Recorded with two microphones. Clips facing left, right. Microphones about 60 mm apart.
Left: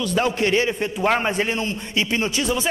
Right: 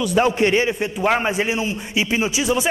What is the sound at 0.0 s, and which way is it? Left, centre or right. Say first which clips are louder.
Speech: right 4 dB; centre.